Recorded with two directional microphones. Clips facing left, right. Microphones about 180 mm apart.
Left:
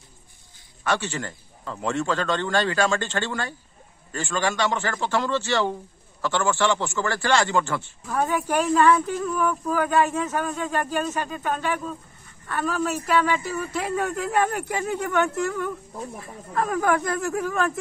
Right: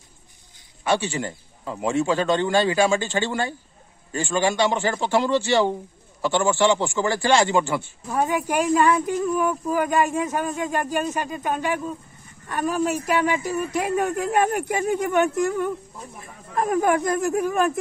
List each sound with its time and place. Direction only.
0.8 s speech: 10° right (ahead or behind)